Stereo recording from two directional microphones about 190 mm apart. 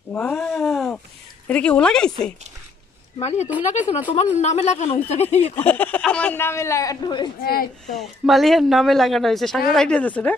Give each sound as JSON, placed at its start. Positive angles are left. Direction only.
{"t": 0.1, "sound": "a sound", "side_deg": 5}
{"t": 1.5, "sound": "speech", "side_deg": 5}
{"t": 3.2, "sound": "speech", "side_deg": 35}
{"t": 5.6, "sound": "speech", "side_deg": 10}
{"t": 7.4, "sound": "speech", "side_deg": 50}
{"t": 7.9, "sound": "speech", "side_deg": 0}